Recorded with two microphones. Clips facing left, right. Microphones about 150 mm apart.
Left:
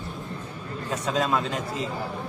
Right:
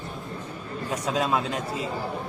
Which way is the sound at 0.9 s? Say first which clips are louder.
Even; 10° right (ahead or behind).